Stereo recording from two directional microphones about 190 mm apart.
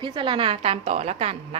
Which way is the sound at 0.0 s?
25° right (ahead or behind).